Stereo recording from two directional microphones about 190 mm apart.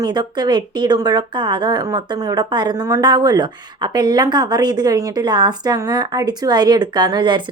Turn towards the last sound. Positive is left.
turn(degrees=-25)  # may be behind; listen again after turning